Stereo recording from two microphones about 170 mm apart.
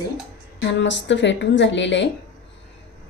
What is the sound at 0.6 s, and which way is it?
A woman's voice, 90° left.